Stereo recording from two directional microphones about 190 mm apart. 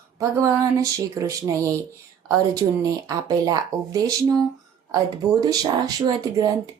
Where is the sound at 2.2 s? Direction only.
20° right (ahead or behind).